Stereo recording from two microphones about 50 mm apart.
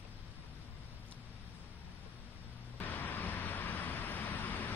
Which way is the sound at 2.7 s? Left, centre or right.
Left.